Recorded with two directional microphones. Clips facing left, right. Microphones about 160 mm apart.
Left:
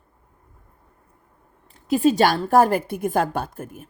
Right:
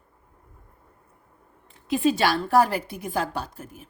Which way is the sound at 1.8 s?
40° left (ahead or behind).